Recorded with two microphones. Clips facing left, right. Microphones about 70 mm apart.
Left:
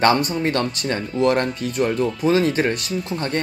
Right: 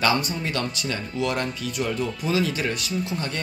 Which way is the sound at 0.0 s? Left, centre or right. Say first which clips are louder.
Left 6 dB; left.